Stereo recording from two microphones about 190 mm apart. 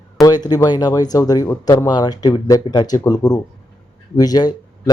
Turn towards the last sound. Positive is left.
turn(degrees=20)  # may be behind; listen again after turning